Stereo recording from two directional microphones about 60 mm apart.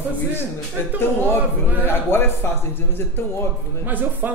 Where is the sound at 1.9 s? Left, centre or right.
Left.